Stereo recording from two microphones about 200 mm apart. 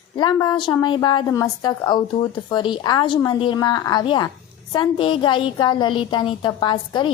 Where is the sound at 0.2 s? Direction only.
20° left (ahead or behind).